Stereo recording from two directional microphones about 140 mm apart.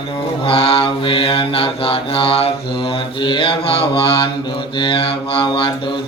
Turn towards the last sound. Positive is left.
turn(degrees=40)  # may be behind; listen again after turning